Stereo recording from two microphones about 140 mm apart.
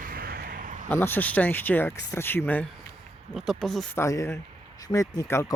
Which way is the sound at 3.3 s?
Centre (ahead or behind).